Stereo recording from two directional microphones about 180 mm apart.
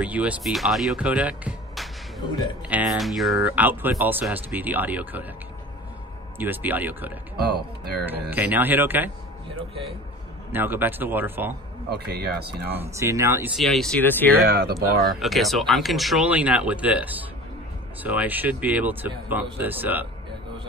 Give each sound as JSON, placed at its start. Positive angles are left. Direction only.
{"t": 0.0, "sound": "speech", "side_deg": -5}
{"t": 6.3, "sound": "speech", "side_deg": -10}
{"t": 7.4, "sound": "speech", "side_deg": -60}
{"t": 8.0, "sound": "speech", "side_deg": -10}
{"t": 10.5, "sound": "speech", "side_deg": -10}
{"t": 11.9, "sound": "speech", "side_deg": -65}
{"t": 12.9, "sound": "speech", "side_deg": -15}
{"t": 13.6, "sound": "speech", "side_deg": 0}
{"t": 14.5, "sound": "speech", "side_deg": -60}
{"t": 15.0, "sound": "speech", "side_deg": 0}